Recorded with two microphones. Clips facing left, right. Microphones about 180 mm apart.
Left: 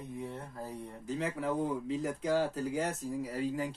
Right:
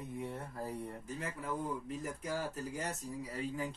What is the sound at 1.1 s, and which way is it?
Speech, 80° left.